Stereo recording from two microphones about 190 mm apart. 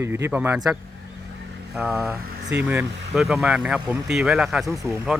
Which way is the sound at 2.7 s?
5° right (ahead or behind).